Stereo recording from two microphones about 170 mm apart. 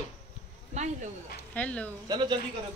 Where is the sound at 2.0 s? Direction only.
25° right (ahead or behind).